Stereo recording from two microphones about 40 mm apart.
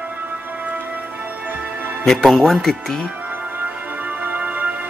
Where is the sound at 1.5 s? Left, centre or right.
Right.